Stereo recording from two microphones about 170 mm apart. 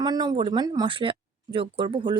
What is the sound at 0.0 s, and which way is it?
Speech, 25° right (ahead or behind).